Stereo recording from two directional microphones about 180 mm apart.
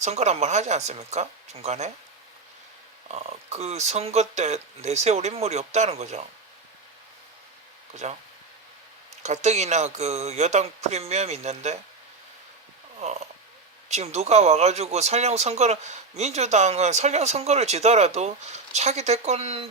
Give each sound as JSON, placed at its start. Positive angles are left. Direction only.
{"t": 0.0, "sound": "speech", "side_deg": -40}
{"t": 3.1, "sound": "speech", "side_deg": -35}
{"t": 8.0, "sound": "speech", "side_deg": -40}
{"t": 9.2, "sound": "speech", "side_deg": -40}
{"t": 13.0, "sound": "speech", "side_deg": -40}